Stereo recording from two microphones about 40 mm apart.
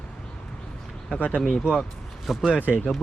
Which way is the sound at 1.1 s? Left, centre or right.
Left.